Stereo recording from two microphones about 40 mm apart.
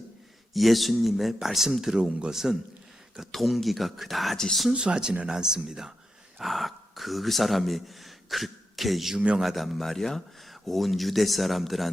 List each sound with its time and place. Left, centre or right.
0.5 s speech: centre
2.0 s speech: right
2.3 s speech: centre
4.4 s speech: centre
4.7 s speech: right
6.4 s speech: centre